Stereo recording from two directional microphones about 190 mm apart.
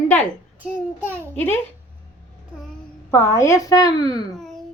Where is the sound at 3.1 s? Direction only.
15° left (ahead or behind).